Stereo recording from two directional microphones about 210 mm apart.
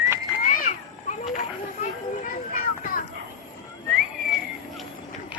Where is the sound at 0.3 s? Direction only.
40° left (ahead or behind).